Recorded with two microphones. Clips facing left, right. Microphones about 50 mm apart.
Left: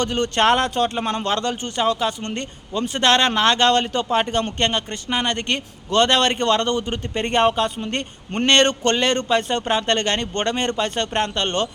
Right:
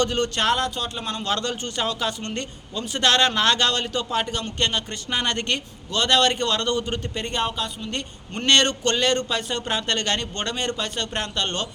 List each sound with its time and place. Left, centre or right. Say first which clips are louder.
0.0 s a man's voice: left 3 dB; left
5.0 s speech: left 2 dB; centre
5.5 s a man's voice: left 7 dB; left
7.2 s a man's voice: left 10 dB; left